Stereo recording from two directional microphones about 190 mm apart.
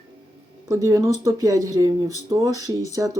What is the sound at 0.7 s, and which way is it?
Speech, 15° right (ahead or behind).